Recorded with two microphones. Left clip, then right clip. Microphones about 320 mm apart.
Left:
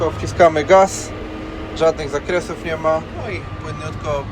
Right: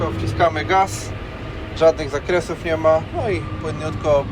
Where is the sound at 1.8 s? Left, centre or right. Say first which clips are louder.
Right 1 dB; centre.